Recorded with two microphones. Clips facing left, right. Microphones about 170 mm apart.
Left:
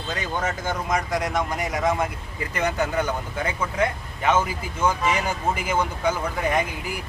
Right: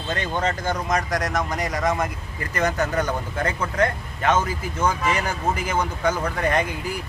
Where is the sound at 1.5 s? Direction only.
5° left (ahead or behind).